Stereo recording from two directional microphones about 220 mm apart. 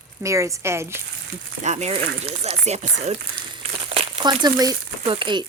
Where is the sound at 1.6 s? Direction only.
30° right (ahead or behind).